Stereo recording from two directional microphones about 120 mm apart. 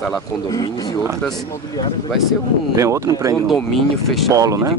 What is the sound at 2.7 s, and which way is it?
Speech, 25° right (ahead or behind).